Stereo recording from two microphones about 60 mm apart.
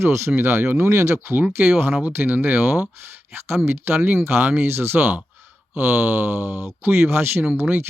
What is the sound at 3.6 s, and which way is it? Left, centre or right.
Speech, right.